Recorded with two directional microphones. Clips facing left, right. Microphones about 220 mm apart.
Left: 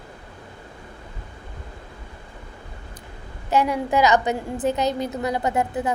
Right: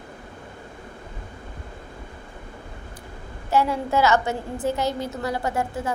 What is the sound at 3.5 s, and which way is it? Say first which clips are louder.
A woman's voice: left 1 dB; 15° left (ahead or behind).